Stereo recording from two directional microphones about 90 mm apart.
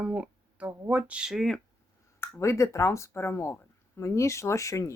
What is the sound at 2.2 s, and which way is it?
Speech, 30° left (ahead or behind).